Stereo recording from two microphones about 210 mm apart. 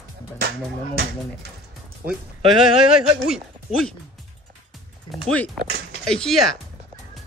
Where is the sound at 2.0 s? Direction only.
40° right (ahead or behind).